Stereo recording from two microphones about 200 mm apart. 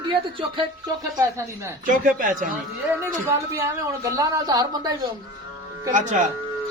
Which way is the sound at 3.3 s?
15° right (ahead or behind).